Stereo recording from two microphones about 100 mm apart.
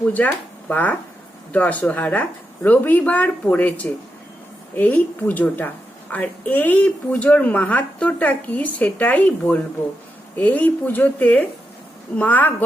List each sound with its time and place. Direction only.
0.1 s a woman's voice: 15° left (ahead or behind)